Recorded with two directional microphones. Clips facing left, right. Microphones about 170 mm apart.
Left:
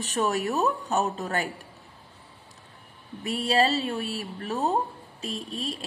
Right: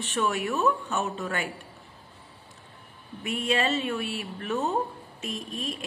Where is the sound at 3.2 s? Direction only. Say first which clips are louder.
Left 3 dB; 35° left (ahead or behind).